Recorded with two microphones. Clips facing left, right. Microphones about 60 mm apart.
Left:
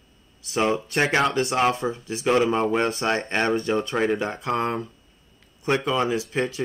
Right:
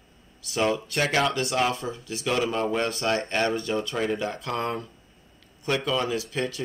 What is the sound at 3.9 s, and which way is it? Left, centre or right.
Speech, left.